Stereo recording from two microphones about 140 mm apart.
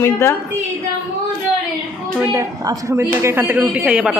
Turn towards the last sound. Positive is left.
turn(degrees=-5)  # may be behind; listen again after turning